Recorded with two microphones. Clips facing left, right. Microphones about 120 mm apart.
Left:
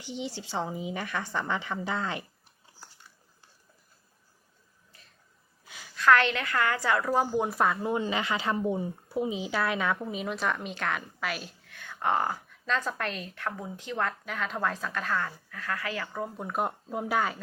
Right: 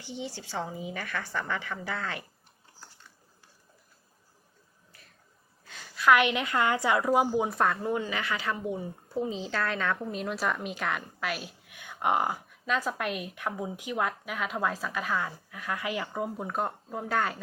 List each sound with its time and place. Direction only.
0.0 s a woman's voice: 15° left (ahead or behind)
5.6 s a sound: 10° left (ahead or behind)
6.0 s a woman's voice: 10° right (ahead or behind)
7.3 s a woman's voice: centre (ahead or behind)
7.8 s a woman's voice: 20° left (ahead or behind)
9.0 s a woman's voice: 10° left (ahead or behind)
11.6 s a woman's voice: 15° right (ahead or behind)
16.5 s speech: 10° left (ahead or behind)
17.2 s a woman's voice: centre (ahead or behind)